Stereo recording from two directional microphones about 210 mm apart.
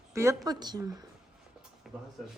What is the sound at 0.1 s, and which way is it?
Speech, 15° right (ahead or behind).